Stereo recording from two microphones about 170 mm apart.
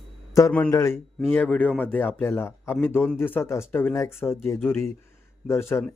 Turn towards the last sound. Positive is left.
turn(degrees=15)  # may be behind; listen again after turning